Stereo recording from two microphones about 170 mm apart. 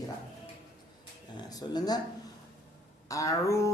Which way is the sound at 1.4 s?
20° left (ahead or behind).